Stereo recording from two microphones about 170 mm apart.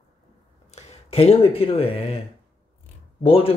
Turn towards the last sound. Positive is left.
turn(degrees=35)  # may be behind; listen again after turning